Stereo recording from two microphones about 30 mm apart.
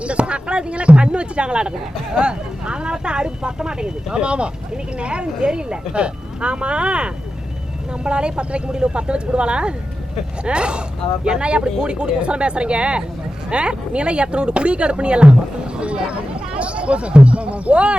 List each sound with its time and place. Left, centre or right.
0.0 s speech: right